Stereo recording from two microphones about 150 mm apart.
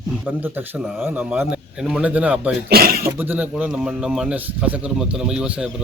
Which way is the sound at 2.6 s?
85° right.